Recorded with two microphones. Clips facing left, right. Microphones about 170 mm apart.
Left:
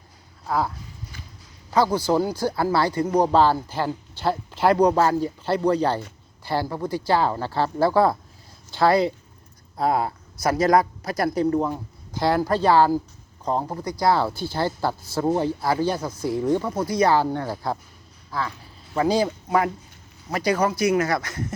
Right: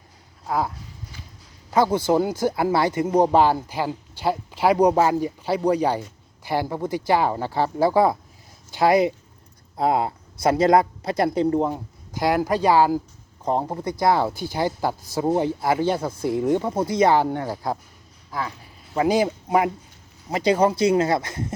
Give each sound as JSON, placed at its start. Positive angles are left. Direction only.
{"t": 0.4, "sound": "speech", "side_deg": -20}
{"t": 1.7, "sound": "speech", "side_deg": -25}